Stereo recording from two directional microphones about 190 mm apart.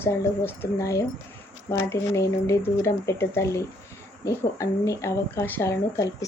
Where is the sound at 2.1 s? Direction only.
15° left (ahead or behind).